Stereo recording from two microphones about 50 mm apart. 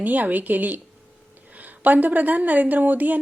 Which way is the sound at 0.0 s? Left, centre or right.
Right.